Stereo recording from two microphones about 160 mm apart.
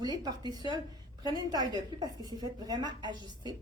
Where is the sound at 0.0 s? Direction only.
25° right (ahead or behind).